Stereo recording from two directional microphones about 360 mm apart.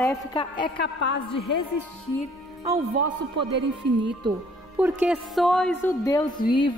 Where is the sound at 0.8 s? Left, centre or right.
Left.